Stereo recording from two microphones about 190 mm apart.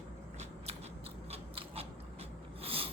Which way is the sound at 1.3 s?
30° right (ahead or behind).